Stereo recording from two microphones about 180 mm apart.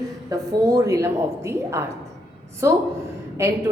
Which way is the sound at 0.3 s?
20° right (ahead or behind).